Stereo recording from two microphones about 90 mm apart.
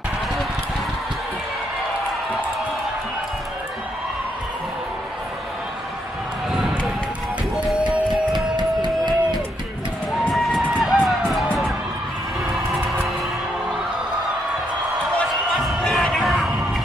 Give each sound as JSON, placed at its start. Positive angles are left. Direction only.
{"t": 7.5, "sound": "music", "side_deg": -10}
{"t": 8.5, "sound": "music", "side_deg": -55}
{"t": 10.3, "sound": "run", "side_deg": 0}
{"t": 10.8, "sound": "music", "side_deg": 0}
{"t": 15.6, "sound": "music", "side_deg": 5}